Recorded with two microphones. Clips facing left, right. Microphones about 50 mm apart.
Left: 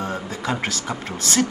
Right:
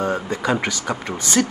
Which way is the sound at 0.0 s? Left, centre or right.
Right.